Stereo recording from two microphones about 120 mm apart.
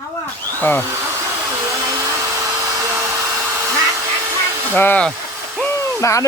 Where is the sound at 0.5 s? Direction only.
15° left (ahead or behind).